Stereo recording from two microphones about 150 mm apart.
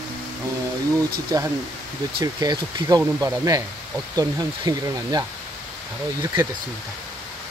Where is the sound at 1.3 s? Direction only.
25° right (ahead or behind).